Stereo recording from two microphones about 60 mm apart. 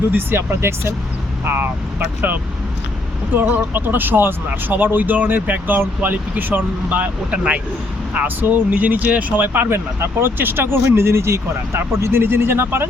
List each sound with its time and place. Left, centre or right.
0.1 s speech: right
3.8 s speech: right
7.3 s speech: centre; by 12.8 s right